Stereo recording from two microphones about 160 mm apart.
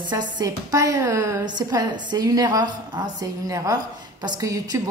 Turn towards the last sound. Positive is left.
turn(degrees=-20)  # may be behind; listen again after turning